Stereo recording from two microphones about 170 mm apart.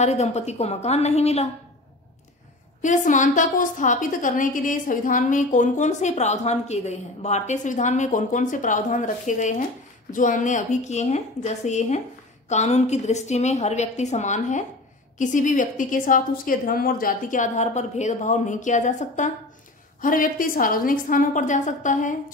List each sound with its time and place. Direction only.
0.0 s a woman's voice: 40° left (ahead or behind)
2.8 s a woman's voice: 45° left (ahead or behind)